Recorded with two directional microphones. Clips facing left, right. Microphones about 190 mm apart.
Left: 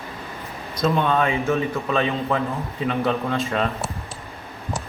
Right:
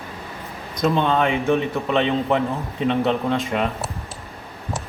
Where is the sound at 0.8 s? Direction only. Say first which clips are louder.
Right 1 dB; 20° right (ahead or behind).